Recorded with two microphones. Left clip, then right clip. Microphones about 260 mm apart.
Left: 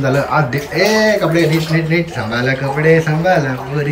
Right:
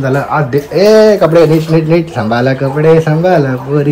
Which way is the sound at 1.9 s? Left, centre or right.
Centre.